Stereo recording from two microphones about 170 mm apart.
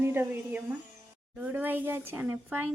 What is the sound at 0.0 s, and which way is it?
Speech, 10° right (ahead or behind).